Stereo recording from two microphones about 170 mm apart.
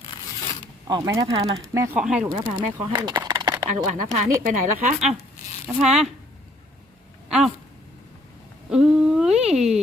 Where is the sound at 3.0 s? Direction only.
25° right (ahead or behind).